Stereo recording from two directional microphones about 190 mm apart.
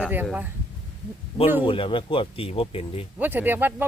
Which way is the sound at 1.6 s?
25° left (ahead or behind).